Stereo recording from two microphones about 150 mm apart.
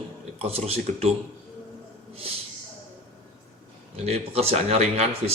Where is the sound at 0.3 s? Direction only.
45° right (ahead or behind).